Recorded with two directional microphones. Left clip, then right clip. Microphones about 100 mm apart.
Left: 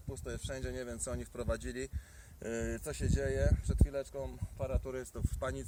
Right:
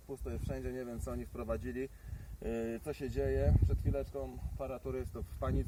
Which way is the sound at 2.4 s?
45° left (ahead or behind).